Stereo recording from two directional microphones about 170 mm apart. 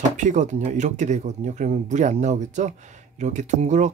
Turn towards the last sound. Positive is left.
turn(degrees=-45)  # may be behind; listen again after turning